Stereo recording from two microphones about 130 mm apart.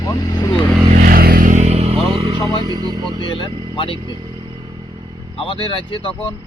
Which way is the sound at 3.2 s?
40° left (ahead or behind).